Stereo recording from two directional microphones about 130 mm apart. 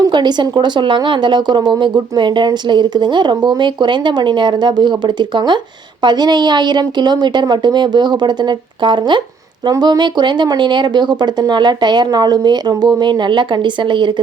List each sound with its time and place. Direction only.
0.0 s speech: 35° right (ahead or behind)